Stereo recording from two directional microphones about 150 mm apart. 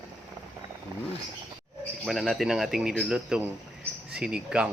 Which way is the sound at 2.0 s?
Centre (ahead or behind).